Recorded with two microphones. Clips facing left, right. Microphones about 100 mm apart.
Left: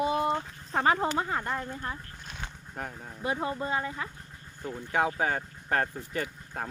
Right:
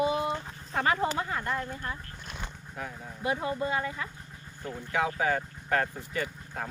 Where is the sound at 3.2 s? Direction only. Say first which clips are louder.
Right 1 dB; 30° left (ahead or behind).